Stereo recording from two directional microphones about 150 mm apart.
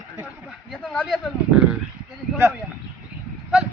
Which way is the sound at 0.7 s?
5° left (ahead or behind).